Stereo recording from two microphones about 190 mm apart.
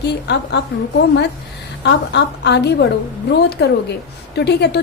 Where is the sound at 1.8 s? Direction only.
65° left (ahead or behind).